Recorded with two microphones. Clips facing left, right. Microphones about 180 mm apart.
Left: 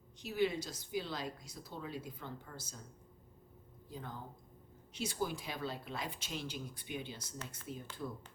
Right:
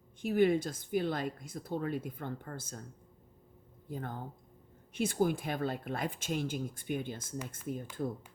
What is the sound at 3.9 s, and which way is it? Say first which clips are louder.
Speech: right 6 dB; 55° right (ahead or behind).